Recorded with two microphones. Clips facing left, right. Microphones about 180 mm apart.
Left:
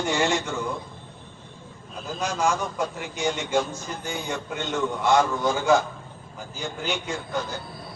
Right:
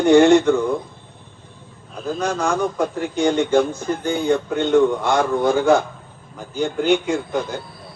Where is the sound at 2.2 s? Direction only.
55° right (ahead or behind).